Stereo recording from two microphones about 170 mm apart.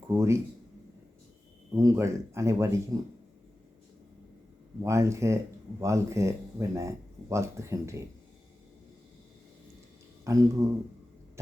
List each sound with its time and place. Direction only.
0.1 s speech: 15° right (ahead or behind)
1.7 s speech: 20° right (ahead or behind)
4.8 s speech: 15° right (ahead or behind)
10.2 s speech: 20° right (ahead or behind)